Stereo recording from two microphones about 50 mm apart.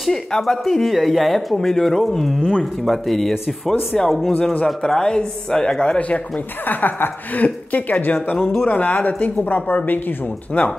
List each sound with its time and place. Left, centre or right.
0.0 s speech: centre; by 6.2 s left
6.6 s a woman's voice: left